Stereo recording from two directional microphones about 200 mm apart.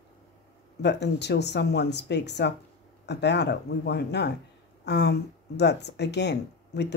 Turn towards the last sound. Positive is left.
turn(degrees=60)  # may be behind; listen again after turning